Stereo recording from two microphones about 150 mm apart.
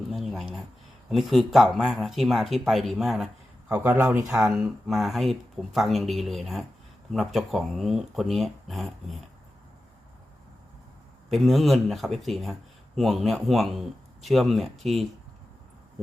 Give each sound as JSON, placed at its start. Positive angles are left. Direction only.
{"t": 0.1, "sound": "a sound", "side_deg": 0}
{"t": 1.1, "sound": "speech", "side_deg": 0}
{"t": 3.7, "sound": "speech", "side_deg": -20}
{"t": 4.4, "sound": "speech", "side_deg": -5}
{"t": 11.3, "sound": "speech", "side_deg": 0}